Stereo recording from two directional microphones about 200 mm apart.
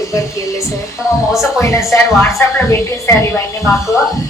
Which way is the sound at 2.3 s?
15° left (ahead or behind).